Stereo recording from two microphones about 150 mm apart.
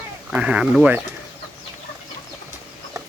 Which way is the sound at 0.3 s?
5° right (ahead or behind).